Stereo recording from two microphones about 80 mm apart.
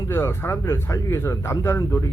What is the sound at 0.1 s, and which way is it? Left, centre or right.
Speech, left.